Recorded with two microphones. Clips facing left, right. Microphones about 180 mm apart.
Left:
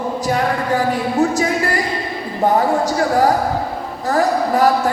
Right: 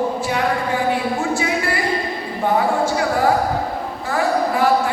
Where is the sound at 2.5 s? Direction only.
40° left (ahead or behind).